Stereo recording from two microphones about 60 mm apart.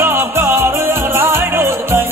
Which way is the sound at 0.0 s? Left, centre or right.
Right.